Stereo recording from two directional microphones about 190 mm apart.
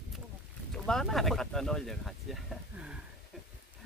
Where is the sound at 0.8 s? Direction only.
Centre (ahead or behind).